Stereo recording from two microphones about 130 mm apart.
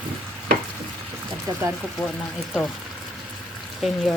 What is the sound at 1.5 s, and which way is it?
Speech, 30° right (ahead or behind).